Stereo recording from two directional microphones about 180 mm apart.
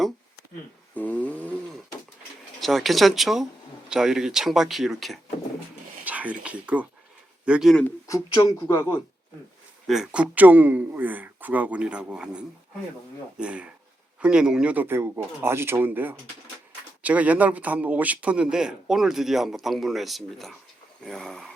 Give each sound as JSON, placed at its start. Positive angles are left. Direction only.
{"t": 0.9, "sound": "a sound", "side_deg": 10}
{"t": 2.6, "sound": "a man's voice", "side_deg": 0}
{"t": 8.0, "sound": "speech", "side_deg": 20}
{"t": 9.8, "sound": "a man's voice", "side_deg": 0}